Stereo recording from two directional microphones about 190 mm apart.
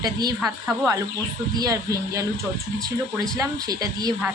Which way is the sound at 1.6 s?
20° right (ahead or behind).